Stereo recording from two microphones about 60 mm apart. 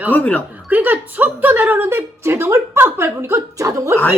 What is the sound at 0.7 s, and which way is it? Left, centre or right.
A woman's voice, right.